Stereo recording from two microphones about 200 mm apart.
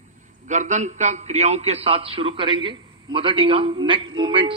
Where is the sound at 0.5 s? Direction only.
35° right (ahead or behind).